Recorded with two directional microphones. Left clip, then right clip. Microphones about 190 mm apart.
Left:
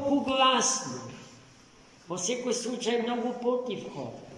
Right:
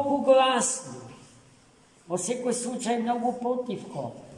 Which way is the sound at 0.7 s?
Centre (ahead or behind).